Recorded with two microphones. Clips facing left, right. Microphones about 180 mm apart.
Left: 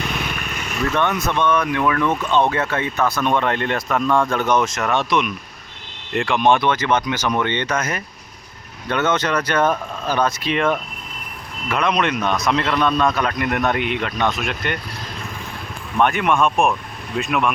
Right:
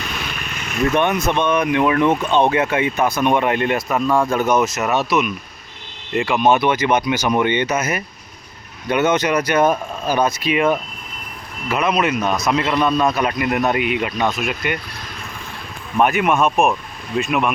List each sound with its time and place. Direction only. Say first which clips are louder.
0.9 s a man's voice: right 2 dB; 20° right (ahead or behind)
16.0 s a man's voice: right 1 dB; 5° right (ahead or behind)